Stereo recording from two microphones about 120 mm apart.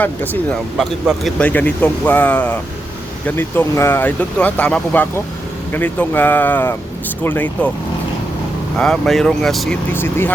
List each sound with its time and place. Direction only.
0.0 s speech: 15° left (ahead or behind)
0.8 s speech: centre (ahead or behind)
1.5 s speech: 15° left (ahead or behind)
8.8 s speech: 5° left (ahead or behind)
9.9 s speech: 20° left (ahead or behind)